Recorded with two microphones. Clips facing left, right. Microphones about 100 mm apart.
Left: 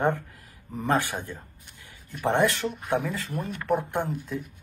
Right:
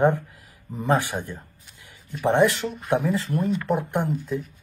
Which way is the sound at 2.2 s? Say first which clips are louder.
Right 4 dB; 15° right (ahead or behind).